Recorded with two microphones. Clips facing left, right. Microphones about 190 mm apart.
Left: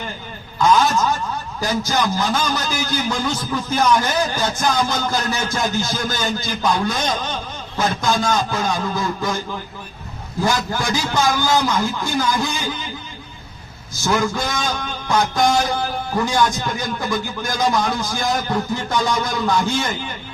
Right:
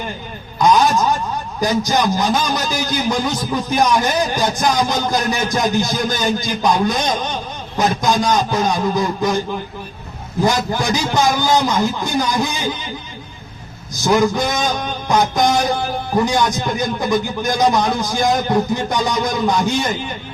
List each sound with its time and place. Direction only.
0.6 s a man's voice: 15° right (ahead or behind)
10.4 s a man's voice: 20° right (ahead or behind)
14.0 s a man's voice: 15° right (ahead or behind)